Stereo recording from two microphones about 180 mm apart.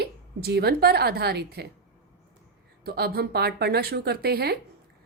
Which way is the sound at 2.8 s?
60° right (ahead or behind).